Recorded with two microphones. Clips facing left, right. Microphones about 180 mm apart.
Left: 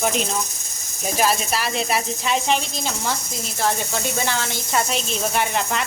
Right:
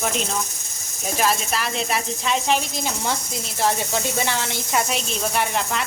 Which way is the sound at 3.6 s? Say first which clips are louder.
Right 1 dB; 25° right (ahead or behind).